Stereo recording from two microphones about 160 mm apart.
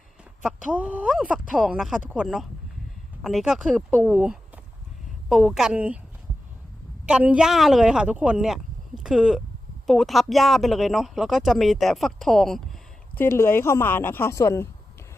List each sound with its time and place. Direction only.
0.4 s speech: 5° right (ahead or behind)
7.0 s speech: 10° right (ahead or behind)
13.1 s speech: 15° left (ahead or behind)